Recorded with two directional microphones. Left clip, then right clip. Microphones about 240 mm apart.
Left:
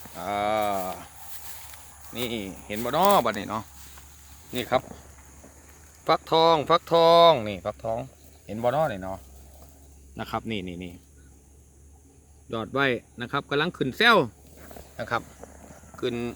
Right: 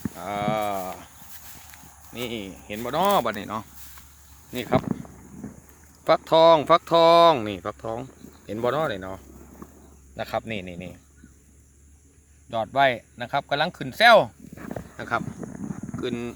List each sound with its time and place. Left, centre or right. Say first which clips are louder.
0.1 s a sound: left 2 dB; centre
2.1 s speech: left 1 dB; centre
6.1 s speech: right 4 dB; right
10.2 s speech: right 3 dB; right
10.6 s speech: even; right
12.5 s speech: right 4 dB; right
16.0 s speech: left 1 dB; centre